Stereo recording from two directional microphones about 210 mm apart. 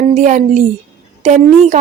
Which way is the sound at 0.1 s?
35° right (ahead or behind).